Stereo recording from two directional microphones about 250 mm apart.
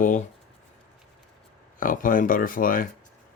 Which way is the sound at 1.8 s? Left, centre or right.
Left.